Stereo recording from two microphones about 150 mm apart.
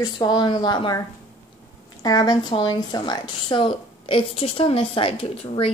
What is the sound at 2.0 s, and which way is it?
A woman's voice, 25° left (ahead or behind).